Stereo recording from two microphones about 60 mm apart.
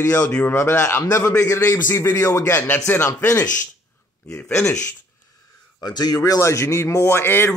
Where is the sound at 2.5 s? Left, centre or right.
Left.